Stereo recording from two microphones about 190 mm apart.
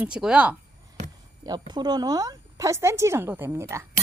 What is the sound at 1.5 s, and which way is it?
Speech, 25° right (ahead or behind).